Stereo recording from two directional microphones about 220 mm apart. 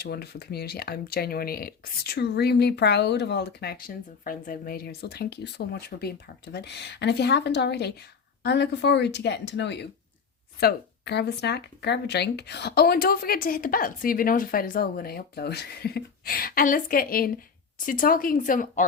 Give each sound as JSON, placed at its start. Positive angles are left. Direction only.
{"t": 0.0, "sound": "speech", "side_deg": 45}